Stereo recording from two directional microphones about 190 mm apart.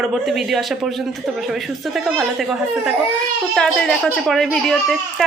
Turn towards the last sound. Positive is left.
turn(degrees=0)  # may be behind; listen again after turning